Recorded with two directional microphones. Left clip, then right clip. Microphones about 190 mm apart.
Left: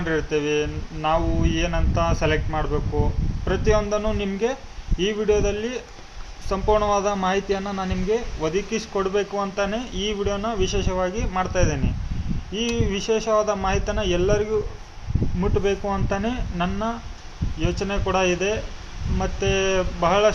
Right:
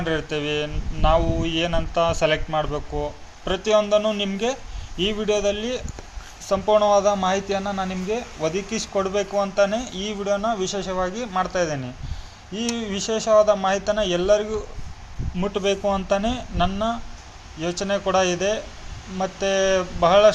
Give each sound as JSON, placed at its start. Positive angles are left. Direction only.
{"t": 0.0, "sound": "speech", "side_deg": -20}